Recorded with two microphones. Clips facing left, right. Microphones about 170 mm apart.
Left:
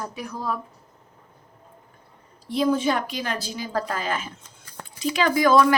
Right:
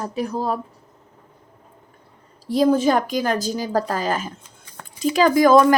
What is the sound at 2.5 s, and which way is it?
A woman's voice, 40° right (ahead or behind).